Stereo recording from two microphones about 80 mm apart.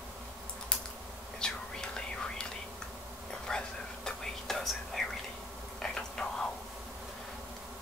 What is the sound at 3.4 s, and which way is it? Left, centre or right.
Whispering, centre.